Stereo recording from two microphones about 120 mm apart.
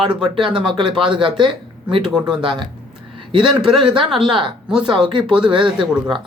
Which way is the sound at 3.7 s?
45° right (ahead or behind).